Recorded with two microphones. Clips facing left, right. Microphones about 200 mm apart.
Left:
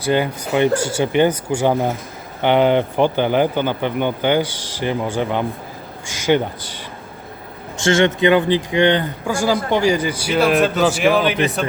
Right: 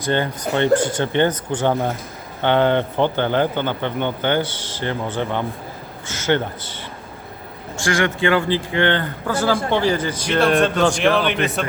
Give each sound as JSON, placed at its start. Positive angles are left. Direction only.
{"t": 0.0, "sound": "speech", "side_deg": 10}
{"t": 7.8, "sound": "speech", "side_deg": 25}